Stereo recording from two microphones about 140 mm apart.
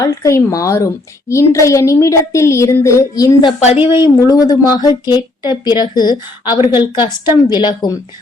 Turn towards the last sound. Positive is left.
turn(degrees=30)  # may be behind; listen again after turning